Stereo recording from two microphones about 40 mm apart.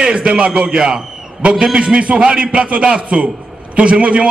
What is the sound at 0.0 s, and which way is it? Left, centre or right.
A man's voice, right.